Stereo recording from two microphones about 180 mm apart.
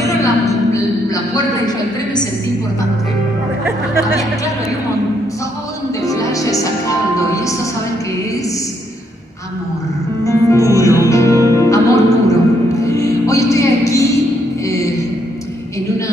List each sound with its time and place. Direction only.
0.0 s a sound: 15° left (ahead or behind)
6.0 s music: 20° left (ahead or behind)
10.2 s music: 15° left (ahead or behind)